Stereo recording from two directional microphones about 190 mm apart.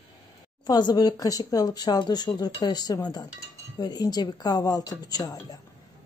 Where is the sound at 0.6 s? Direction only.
20° left (ahead or behind).